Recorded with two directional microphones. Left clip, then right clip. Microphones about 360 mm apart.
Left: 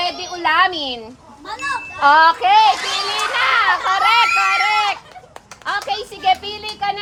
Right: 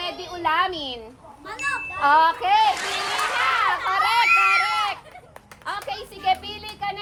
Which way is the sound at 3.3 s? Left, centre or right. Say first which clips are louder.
Left 7 dB; left.